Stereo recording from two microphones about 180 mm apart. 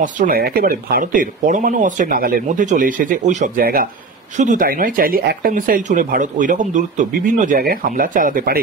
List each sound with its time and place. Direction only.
0.0 s speech: 50° right (ahead or behind)